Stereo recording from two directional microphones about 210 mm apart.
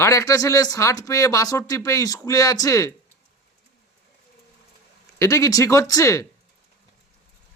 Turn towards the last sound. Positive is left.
turn(degrees=15)  # may be behind; listen again after turning